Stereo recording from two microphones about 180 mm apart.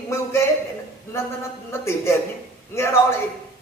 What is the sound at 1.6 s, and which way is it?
Speech, 15° left (ahead or behind).